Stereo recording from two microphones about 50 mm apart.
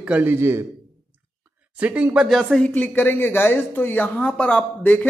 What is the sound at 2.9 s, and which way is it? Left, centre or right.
Speech, left.